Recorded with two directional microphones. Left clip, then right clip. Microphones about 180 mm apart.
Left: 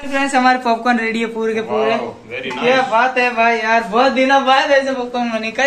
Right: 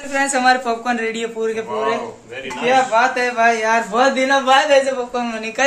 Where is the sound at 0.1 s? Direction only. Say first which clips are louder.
Left 1 dB; 10° right (ahead or behind).